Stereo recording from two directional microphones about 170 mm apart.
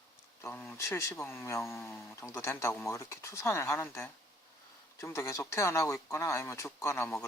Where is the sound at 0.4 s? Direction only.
10° left (ahead or behind).